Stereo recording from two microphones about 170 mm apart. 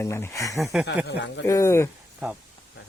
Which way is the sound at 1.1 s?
90° left.